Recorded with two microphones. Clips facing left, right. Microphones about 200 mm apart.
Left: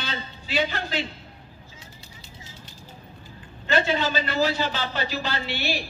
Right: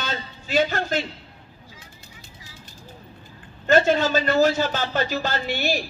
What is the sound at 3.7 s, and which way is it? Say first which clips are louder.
A man's voice: right 6 dB; 45° right (ahead or behind).